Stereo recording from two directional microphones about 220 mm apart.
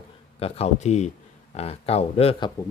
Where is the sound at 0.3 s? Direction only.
25° left (ahead or behind).